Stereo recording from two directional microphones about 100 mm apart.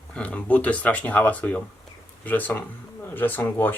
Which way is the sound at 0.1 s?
15° left (ahead or behind).